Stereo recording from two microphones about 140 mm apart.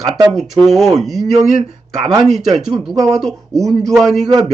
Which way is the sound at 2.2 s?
Centre (ahead or behind).